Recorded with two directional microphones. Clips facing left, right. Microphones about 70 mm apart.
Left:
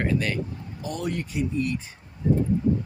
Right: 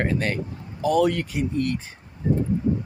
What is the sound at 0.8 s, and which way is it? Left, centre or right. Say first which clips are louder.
Speech: right 10 dB; right.